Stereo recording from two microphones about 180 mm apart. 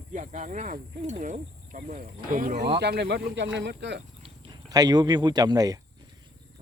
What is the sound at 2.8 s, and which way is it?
Speech, 70° right (ahead or behind).